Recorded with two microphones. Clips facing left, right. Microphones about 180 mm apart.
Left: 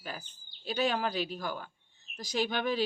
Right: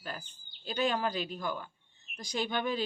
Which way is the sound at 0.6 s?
5° left (ahead or behind).